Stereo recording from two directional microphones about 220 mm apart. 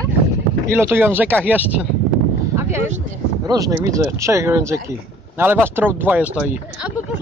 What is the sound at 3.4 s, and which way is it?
Speech, 15° right (ahead or behind).